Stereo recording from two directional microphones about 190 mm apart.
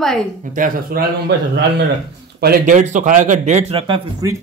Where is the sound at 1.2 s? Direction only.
60° right (ahead or behind).